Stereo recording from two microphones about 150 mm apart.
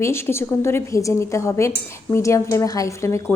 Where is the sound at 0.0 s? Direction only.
15° left (ahead or behind).